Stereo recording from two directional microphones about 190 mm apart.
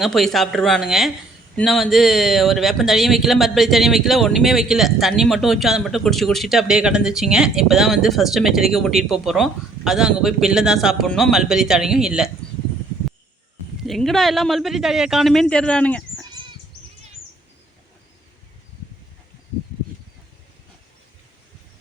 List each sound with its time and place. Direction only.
0.0 s speech: centre (ahead or behind)
13.8 s speech: centre (ahead or behind)